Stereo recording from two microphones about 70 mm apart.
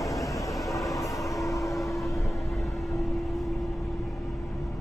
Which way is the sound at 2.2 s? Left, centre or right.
Left.